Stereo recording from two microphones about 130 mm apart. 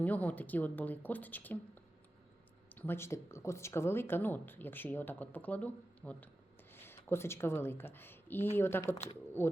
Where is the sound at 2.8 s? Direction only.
20° left (ahead or behind).